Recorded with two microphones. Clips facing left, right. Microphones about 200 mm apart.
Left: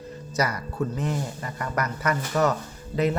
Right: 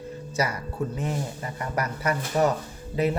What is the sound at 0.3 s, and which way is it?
Speech, 30° right (ahead or behind).